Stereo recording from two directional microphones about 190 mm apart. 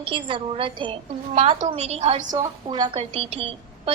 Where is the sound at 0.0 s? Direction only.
25° right (ahead or behind).